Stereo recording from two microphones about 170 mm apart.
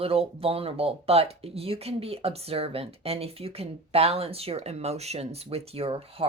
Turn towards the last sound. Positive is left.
turn(degrees=-35)  # may be behind; listen again after turning